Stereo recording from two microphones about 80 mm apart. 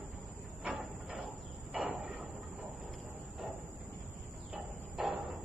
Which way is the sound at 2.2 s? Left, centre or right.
Right.